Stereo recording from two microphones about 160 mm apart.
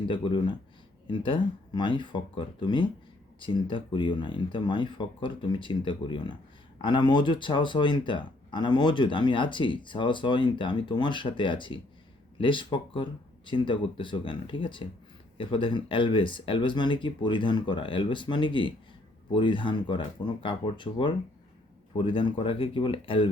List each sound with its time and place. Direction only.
0.1 s speech: 30° left (ahead or behind)